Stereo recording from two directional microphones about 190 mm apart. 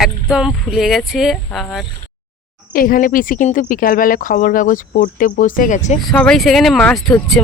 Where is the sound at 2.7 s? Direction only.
50° left (ahead or behind).